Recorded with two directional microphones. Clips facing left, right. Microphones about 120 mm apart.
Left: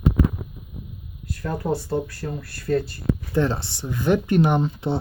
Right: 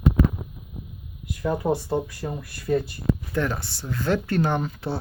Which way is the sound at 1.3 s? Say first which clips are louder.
Right 2 dB; 15° right (ahead or behind).